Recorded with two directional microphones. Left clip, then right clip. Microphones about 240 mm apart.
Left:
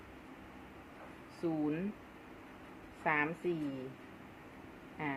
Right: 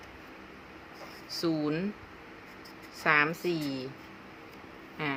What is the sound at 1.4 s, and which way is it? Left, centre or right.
Speech, right.